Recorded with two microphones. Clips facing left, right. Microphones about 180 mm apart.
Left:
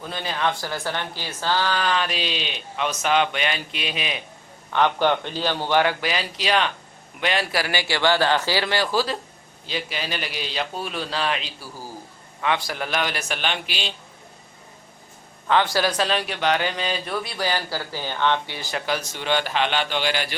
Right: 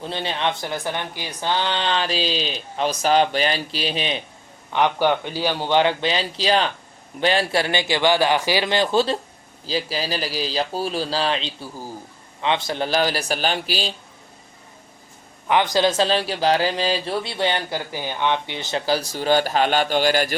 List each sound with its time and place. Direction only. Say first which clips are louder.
0.0 s a man's voice: right 1 dB; 30° right (ahead or behind)
4.7 s a man's voice: right 1 dB; 15° right (ahead or behind)
9.6 s a man's voice: right 5 dB; 35° right (ahead or behind)
15.4 s a man's voice: right 2 dB; 15° right (ahead or behind); by 20.3 s 45° right (ahead or behind)